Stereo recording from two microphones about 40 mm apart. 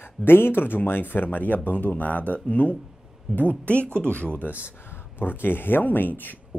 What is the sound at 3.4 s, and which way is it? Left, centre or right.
Speech, left.